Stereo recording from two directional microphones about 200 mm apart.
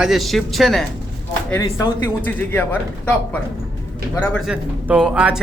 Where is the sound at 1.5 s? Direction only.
15° left (ahead or behind).